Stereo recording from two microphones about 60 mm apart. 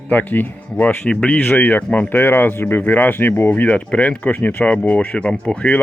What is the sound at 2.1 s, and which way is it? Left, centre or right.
Speech, left.